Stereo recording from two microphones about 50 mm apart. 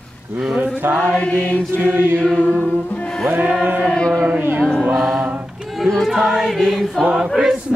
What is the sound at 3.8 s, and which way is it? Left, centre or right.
Chant, centre.